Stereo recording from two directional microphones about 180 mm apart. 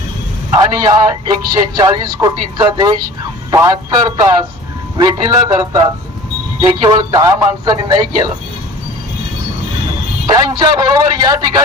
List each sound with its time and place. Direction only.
0.5 s a man's voice: 20° right (ahead or behind)
10.2 s a man's voice: 20° right (ahead or behind)